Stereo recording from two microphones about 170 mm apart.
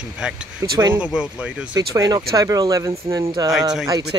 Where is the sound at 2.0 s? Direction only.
20° right (ahead or behind).